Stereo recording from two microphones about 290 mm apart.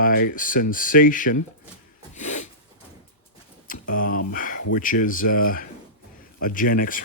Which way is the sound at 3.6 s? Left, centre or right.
Left.